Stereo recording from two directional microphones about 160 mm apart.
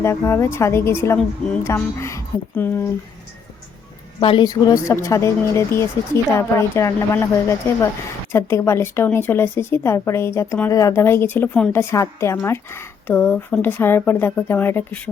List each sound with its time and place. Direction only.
0.0 s a woman's voice: 15° left (ahead or behind)
4.2 s a woman's voice: 30° left (ahead or behind)
8.3 s a woman's voice: 20° left (ahead or behind)